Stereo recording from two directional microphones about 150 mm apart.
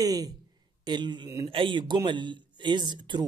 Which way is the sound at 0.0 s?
25° right (ahead or behind).